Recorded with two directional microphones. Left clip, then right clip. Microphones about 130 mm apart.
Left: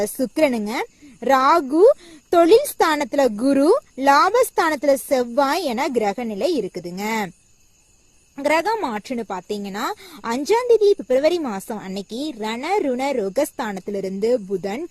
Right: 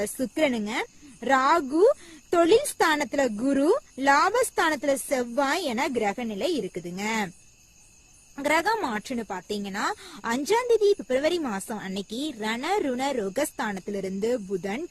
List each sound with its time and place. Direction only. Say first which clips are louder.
0.0 s speech: left 6 dB; 40° left (ahead or behind)
8.4 s speech: left 5 dB; 25° left (ahead or behind)